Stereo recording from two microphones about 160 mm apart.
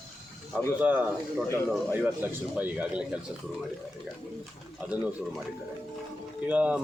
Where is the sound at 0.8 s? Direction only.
10° right (ahead or behind).